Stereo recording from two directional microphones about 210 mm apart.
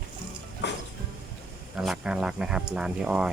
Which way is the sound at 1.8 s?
5° right (ahead or behind).